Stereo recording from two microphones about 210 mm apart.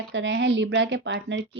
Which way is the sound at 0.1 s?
60° right (ahead or behind).